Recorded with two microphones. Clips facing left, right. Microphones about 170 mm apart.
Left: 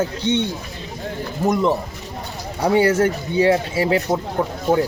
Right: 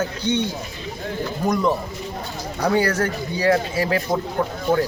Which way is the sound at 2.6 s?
25° left (ahead or behind).